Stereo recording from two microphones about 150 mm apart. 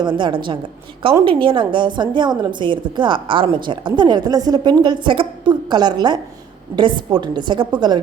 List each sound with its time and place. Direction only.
0.2 s a woman's voice: 30° right (ahead or behind)